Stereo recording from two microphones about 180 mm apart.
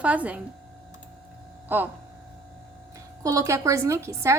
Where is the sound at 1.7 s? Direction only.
10° right (ahead or behind).